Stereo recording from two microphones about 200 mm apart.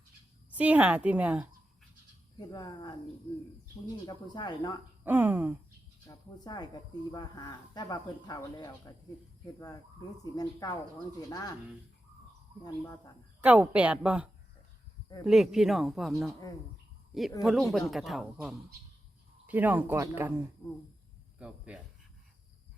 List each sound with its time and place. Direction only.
0.5 s a woman's voice: 5° right (ahead or behind)
2.4 s speech: 20° left (ahead or behind)
4.0 s speech: 20° left (ahead or behind)
5.0 s a woman's voice: 10° right (ahead or behind)
6.1 s speech: 20° left (ahead or behind)
13.4 s speech: 5° right (ahead or behind)
17.4 s a woman's voice: centre (ahead or behind)